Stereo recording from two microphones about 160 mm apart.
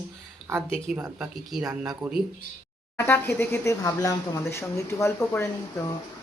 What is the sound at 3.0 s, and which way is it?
Speech, 15° left (ahead or behind).